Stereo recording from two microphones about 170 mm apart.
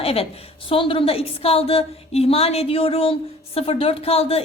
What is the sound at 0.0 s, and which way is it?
A woman's voice, 35° left (ahead or behind).